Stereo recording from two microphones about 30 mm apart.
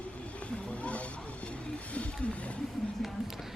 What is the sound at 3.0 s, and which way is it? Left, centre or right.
Speech, centre.